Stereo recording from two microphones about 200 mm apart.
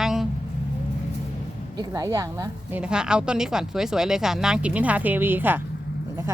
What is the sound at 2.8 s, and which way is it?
A woman's voice, 5° right (ahead or behind).